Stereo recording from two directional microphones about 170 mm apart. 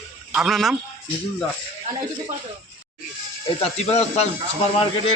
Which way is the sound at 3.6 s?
40° left (ahead or behind).